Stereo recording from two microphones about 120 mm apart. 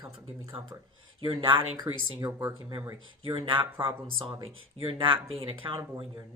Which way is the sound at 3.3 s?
45° right (ahead or behind).